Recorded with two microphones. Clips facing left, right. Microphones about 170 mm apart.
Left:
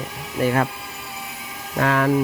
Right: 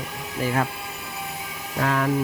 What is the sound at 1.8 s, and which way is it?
Speech, 80° left.